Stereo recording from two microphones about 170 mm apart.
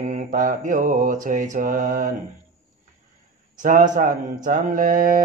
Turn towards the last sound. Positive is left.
turn(degrees=-55)  # may be behind; listen again after turning